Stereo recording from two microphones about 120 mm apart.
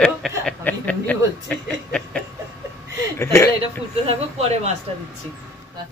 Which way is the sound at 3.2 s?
20° left (ahead or behind).